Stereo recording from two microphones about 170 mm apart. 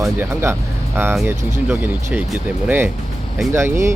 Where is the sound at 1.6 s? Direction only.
10° right (ahead or behind).